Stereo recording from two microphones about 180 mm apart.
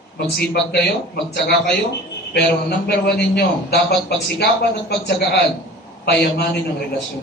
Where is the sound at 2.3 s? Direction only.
60° left (ahead or behind).